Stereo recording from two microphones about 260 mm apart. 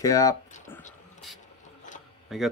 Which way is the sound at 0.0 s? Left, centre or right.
Centre.